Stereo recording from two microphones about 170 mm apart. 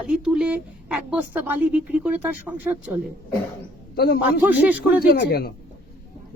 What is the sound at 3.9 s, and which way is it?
A man's voice, 65° left (ahead or behind).